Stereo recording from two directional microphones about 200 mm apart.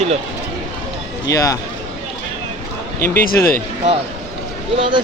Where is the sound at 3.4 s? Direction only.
15° left (ahead or behind).